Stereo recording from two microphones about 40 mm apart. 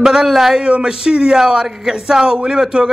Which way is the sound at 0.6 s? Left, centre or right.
Right.